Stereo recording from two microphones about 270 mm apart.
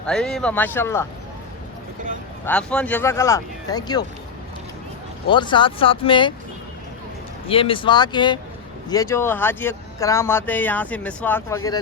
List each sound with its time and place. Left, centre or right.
0.1 s speech: centre
2.4 s speech: centre
5.3 s speech: centre
7.4 s speech: centre